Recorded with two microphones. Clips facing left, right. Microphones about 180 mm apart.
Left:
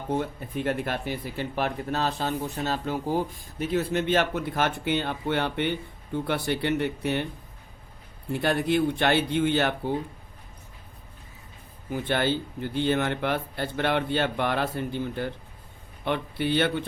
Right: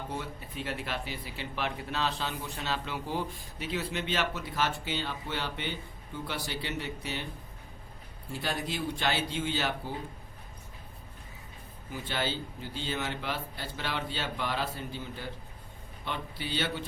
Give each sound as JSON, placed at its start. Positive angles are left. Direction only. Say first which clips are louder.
{"t": 0.1, "sound": "speech", "louder": "left 10 dB", "side_deg": 55}
{"t": 8.3, "sound": "speech", "louder": "left 10 dB", "side_deg": 60}
{"t": 11.9, "sound": "speech", "louder": "left 8 dB", "side_deg": 55}